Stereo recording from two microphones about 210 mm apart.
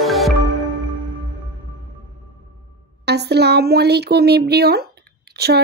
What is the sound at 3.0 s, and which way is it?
Speech, 50° right (ahead or behind).